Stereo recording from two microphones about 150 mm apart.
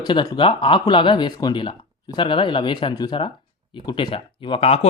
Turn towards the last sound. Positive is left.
turn(degrees=40)  # may be behind; listen again after turning